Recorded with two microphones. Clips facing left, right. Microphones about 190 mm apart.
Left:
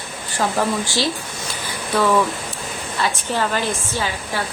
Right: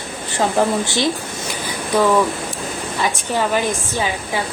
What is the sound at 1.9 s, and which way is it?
A woman's voice, 15° right (ahead or behind).